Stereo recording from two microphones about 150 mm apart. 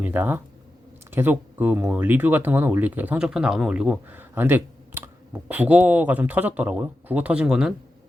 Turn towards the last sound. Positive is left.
turn(degrees=-5)  # may be behind; listen again after turning